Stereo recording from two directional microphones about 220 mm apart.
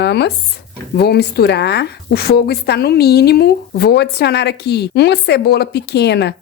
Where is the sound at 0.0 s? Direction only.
50° left (ahead or behind).